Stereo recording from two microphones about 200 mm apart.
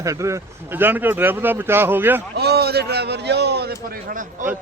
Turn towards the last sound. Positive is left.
turn(degrees=-40)  # may be behind; listen again after turning